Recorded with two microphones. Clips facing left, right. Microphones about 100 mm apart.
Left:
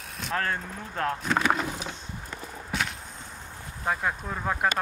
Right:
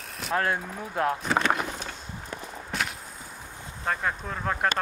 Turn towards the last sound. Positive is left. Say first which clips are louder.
# even
turn(degrees=5)  # may be behind; listen again after turning